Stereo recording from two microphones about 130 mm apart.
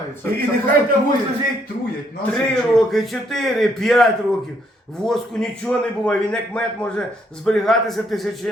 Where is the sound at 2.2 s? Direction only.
5° left (ahead or behind).